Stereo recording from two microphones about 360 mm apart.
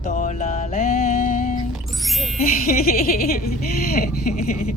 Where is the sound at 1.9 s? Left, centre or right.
Centre.